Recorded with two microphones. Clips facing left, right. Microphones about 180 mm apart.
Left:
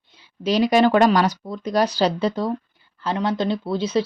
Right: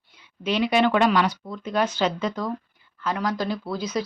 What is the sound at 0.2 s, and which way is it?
Speech, 35° left (ahead or behind).